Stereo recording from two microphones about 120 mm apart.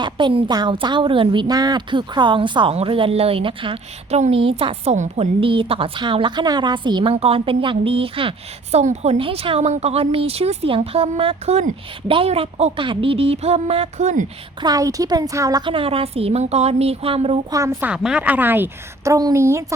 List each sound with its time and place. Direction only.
0.0 s a woman's voice: 40° right (ahead or behind)
4.1 s speech: 60° right (ahead or behind); by 7.1 s 40° right (ahead or behind)
7.1 s speech: 55° right (ahead or behind)
8.7 s a woman's voice: 70° right (ahead or behind)
12.0 s speech: 50° right (ahead or behind)
14.6 s a woman's voice: 30° right (ahead or behind)
15.7 s a woman's voice: 50° right (ahead or behind)
17.5 s a woman's voice: 25° right (ahead or behind)